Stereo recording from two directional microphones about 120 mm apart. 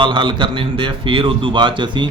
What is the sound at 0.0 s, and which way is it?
A man's voice, 40° right (ahead or behind).